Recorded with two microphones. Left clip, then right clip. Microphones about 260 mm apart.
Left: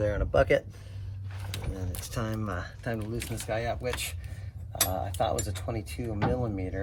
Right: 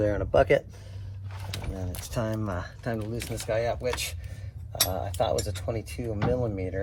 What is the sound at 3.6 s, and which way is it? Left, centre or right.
Speech, centre.